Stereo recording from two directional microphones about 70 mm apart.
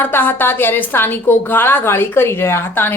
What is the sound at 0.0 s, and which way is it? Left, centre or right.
A woman's voice, left.